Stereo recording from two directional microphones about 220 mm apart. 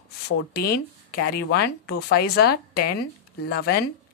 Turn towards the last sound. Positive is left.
turn(degrees=45)  # may be behind; listen again after turning